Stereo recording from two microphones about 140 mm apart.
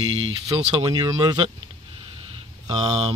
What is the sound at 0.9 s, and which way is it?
Speech, 30° right (ahead or behind).